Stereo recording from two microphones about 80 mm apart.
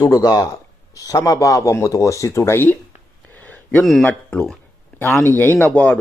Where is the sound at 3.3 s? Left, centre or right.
Centre.